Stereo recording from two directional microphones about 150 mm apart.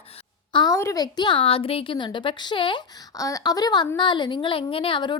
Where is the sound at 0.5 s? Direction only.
25° left (ahead or behind).